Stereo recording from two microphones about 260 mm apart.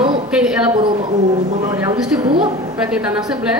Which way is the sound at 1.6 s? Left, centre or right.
Centre.